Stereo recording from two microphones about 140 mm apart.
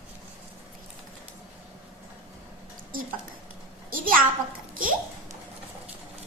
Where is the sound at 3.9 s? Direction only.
80° right.